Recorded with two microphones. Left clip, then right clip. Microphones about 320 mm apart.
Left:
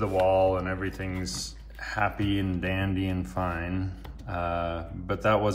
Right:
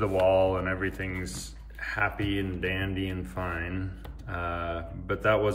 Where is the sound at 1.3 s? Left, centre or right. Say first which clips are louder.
Left 6 dB; left.